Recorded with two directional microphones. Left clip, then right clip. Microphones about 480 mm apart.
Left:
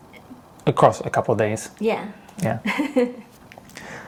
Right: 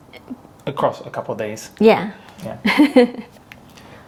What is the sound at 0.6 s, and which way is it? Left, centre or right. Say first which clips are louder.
Speech: left 4 dB; left.